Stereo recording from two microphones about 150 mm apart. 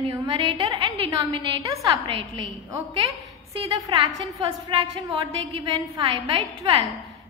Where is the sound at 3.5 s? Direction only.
35° right (ahead or behind).